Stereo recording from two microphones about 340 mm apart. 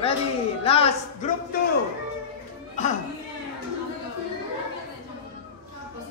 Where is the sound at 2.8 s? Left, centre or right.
Left.